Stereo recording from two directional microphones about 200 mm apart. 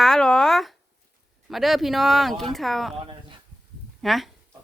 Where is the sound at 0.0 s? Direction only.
Centre (ahead or behind).